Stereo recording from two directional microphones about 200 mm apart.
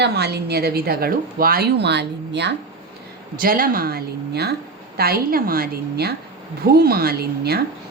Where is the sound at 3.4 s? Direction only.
45° right (ahead or behind).